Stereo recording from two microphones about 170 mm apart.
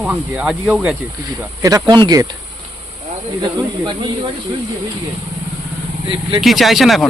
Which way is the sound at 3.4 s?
25° right (ahead or behind).